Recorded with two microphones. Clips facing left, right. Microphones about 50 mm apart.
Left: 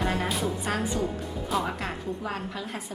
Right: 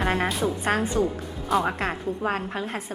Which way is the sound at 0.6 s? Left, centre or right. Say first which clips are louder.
Right 5 dB; right.